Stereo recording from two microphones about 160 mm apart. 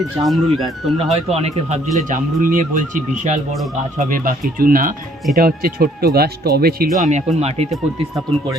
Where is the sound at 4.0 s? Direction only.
60° right (ahead or behind); by 6.9 s 75° right (ahead or behind).